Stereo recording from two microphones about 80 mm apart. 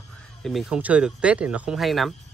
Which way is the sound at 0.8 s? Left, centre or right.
Centre.